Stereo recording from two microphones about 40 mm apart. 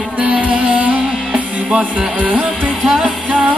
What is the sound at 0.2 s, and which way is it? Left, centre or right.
Music, right.